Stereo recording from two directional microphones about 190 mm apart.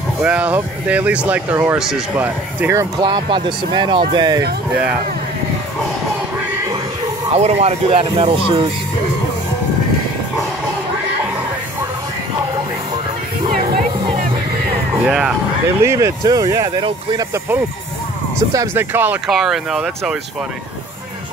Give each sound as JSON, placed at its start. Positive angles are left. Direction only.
{"t": 0.2, "sound": "speech", "side_deg": -5}
{"t": 7.3, "sound": "speech", "side_deg": -35}
{"t": 15.0, "sound": "speech", "side_deg": -5}
{"t": 15.8, "sound": "speech", "side_deg": -15}